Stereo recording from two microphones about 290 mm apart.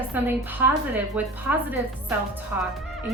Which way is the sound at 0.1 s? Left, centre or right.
Centre.